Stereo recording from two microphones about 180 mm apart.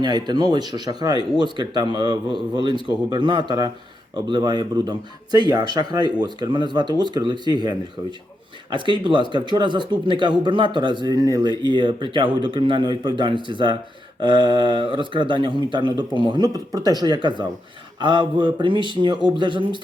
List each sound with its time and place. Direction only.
0.0 s speech: 25° right (ahead or behind)